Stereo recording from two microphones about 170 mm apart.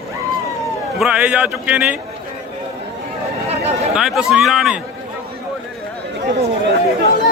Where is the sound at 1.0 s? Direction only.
5° right (ahead or behind).